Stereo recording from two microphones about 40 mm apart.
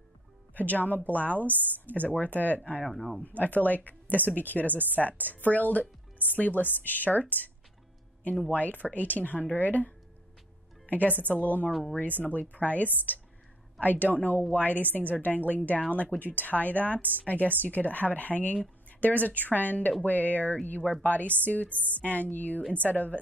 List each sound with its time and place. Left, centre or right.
0.6 s speech: left
2.8 s speech: centre
3.3 s speech: left
8.5 s a woman's voice: left
12.1 s speech: right
12.4 s speech: left
18.9 s a sound: left
19.5 s speech: left
21.7 s speech: right
22.0 s speech: left